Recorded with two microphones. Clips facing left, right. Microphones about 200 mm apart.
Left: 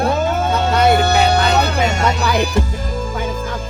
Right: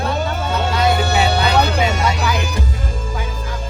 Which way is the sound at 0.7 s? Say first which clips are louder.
Left 4 dB; 50° left (ahead or behind).